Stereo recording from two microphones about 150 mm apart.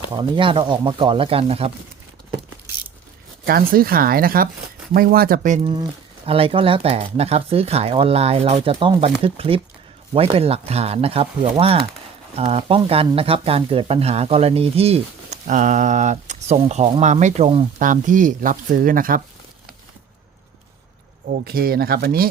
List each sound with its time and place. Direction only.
0.1 s speech: 30° right (ahead or behind)
3.4 s speech: 75° right (ahead or behind)
6.2 s speech: 40° right (ahead or behind)
17.7 s speech: 60° right (ahead or behind)
21.2 s speech: 90° right